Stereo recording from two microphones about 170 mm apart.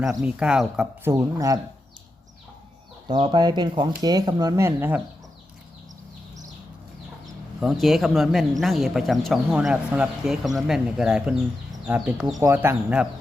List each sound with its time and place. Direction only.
0.0 s speech: 5° right (ahead or behind)
1.1 s speech: 20° right (ahead or behind)
3.1 s speech: 25° right (ahead or behind); by 5.0 s 10° right (ahead or behind)
7.6 s speech: centre (ahead or behind)
12.2 s speech: 20° right (ahead or behind)